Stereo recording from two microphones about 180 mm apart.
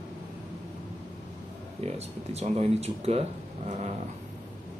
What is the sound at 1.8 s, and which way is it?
Speech, 35° right (ahead or behind).